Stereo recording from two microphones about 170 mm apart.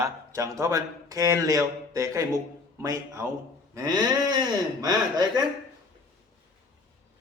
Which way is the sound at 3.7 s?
20° right (ahead or behind).